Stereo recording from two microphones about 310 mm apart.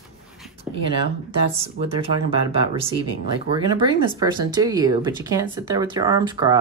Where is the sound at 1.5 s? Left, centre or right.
Centre.